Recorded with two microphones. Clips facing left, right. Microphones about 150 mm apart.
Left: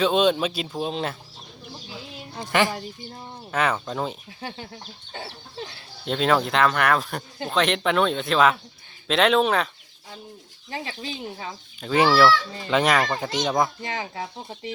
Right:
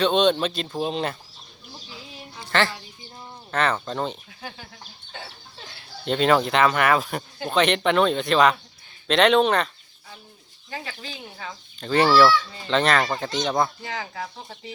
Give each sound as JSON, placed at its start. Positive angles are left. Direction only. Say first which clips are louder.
{"t": 0.0, "sound": "speech", "louder": "even", "side_deg": 5}
{"t": 2.5, "sound": "fowl", "louder": "left 1 dB", "side_deg": 15}
{"t": 3.5, "sound": "speech", "louder": "even", "side_deg": 10}
{"t": 6.1, "sound": "speech", "louder": "right 2 dB", "side_deg": 0}
{"t": 10.8, "sound": "speech", "louder": "left 4 dB", "side_deg": 20}
{"t": 11.8, "sound": "speech", "louder": "right 1 dB", "side_deg": 5}
{"t": 12.6, "sound": "fowl", "louder": "left 1 dB", "side_deg": 10}
{"t": 13.6, "sound": "speech", "louder": "left 1 dB", "side_deg": 20}